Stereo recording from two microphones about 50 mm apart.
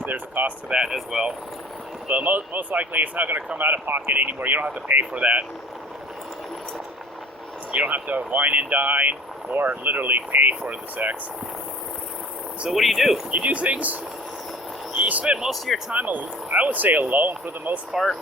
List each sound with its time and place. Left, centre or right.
0.0 s speech: right
0.7 s speech: centre
2.0 s speech: right
5.2 s speech: right
7.7 s speech: right
12.6 s speech: centre
13.3 s speech: right
14.9 s vehicle: right
15.2 s speech: centre
15.4 s speech: centre
15.9 s speech: right